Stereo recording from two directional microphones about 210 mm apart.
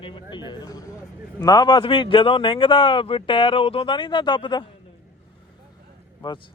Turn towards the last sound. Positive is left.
turn(degrees=20)  # may be behind; listen again after turning